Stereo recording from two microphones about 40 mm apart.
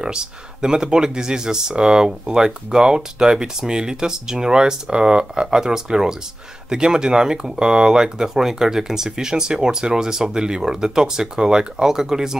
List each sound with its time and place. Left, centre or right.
0.0 s speech: centre